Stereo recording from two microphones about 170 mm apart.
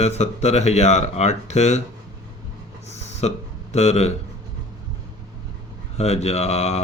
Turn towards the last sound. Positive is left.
turn(degrees=40)  # may be behind; listen again after turning